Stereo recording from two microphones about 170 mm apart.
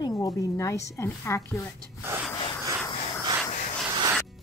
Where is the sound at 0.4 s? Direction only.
20° left (ahead or behind).